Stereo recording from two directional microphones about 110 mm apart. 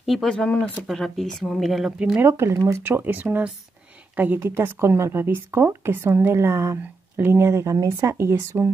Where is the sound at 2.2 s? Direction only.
25° right (ahead or behind).